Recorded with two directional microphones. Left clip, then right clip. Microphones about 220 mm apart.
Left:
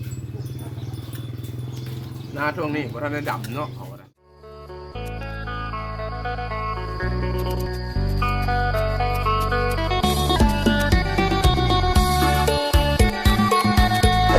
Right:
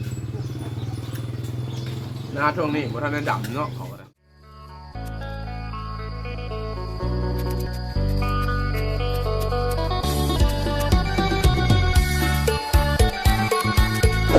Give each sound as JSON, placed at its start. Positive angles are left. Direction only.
{"t": 2.4, "sound": "speech", "side_deg": 25}
{"t": 6.2, "sound": "music", "side_deg": 0}